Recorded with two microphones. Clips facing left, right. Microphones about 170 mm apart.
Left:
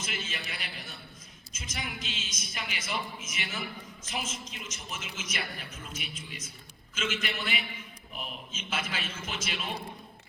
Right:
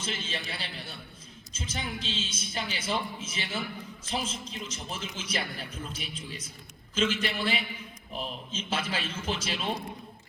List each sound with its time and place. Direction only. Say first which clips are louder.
0.0 s a man's voice: right 3 dB; 30° right (ahead or behind)